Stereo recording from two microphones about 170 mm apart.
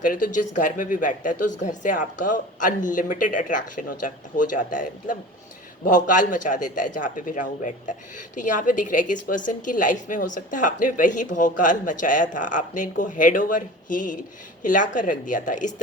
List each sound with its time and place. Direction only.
0.0 s a woman's voice: 50° left (ahead or behind)